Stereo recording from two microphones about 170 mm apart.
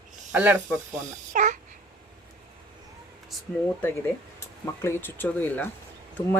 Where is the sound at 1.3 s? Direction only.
45° right (ahead or behind).